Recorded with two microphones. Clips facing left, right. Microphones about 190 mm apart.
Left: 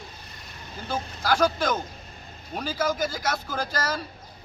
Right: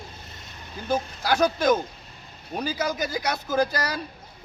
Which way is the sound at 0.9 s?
20° right (ahead or behind).